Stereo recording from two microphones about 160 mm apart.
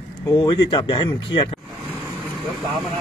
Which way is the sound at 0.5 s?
30° left (ahead or behind).